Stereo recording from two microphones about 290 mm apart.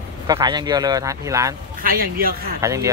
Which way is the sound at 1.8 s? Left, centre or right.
Right.